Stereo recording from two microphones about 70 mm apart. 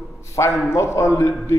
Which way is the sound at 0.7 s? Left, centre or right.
Left.